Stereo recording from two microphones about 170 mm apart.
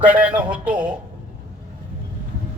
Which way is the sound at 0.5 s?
5° right (ahead or behind).